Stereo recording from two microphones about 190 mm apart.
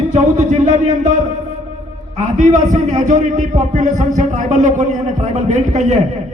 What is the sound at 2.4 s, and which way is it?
A man's voice, 40° right (ahead or behind).